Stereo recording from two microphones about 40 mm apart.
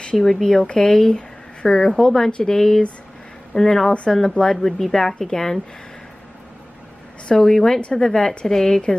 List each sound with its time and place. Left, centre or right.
0.1 s speech: centre
7.3 s speech: centre